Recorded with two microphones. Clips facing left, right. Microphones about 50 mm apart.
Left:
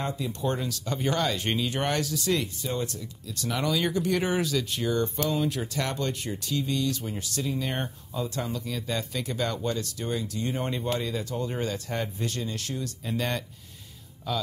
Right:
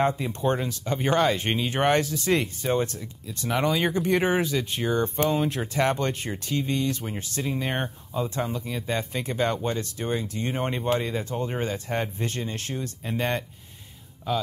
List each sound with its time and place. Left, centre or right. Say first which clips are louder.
0.0 s speech: right 6 dB; right